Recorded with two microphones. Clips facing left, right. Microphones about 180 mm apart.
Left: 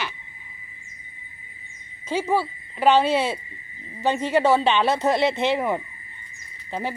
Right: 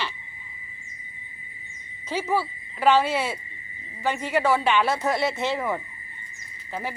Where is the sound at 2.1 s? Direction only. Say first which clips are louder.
Left 3 dB; 15° left (ahead or behind).